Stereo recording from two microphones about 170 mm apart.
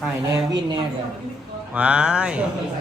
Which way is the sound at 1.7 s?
5° right (ahead or behind).